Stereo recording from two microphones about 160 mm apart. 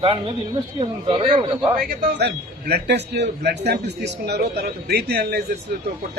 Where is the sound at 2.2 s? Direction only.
90° right.